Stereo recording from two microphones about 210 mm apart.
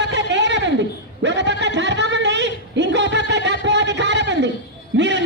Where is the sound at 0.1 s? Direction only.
55° right (ahead or behind).